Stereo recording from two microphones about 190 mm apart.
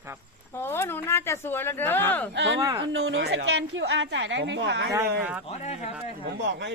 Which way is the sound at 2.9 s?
85° right.